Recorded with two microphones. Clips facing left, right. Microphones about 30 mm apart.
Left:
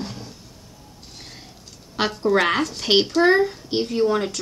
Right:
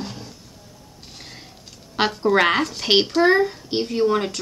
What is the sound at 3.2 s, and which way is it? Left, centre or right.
A child's voice, centre.